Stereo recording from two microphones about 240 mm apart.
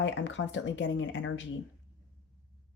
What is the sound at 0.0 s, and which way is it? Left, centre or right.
Speech, left.